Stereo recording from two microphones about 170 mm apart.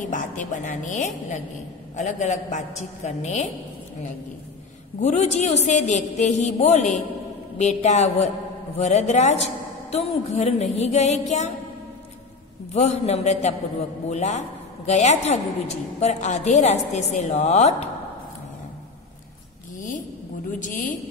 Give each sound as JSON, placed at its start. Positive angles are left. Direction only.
{"t": 0.0, "sound": "a woman's voice", "side_deg": 50}
{"t": 5.0, "sound": "a woman's voice", "side_deg": 40}
{"t": 12.7, "sound": "a woman's voice", "side_deg": 40}
{"t": 20.5, "sound": "a woman's voice", "side_deg": 50}